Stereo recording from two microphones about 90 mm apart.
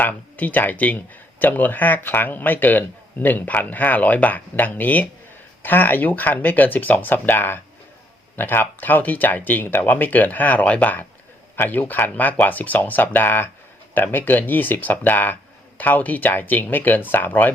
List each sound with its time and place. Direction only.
0.0 s speech: 20° left (ahead or behind)